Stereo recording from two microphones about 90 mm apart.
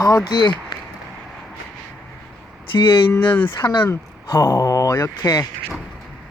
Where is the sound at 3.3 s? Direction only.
20° left (ahead or behind).